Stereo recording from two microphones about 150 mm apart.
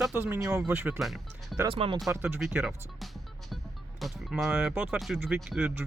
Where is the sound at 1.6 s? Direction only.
35° right (ahead or behind).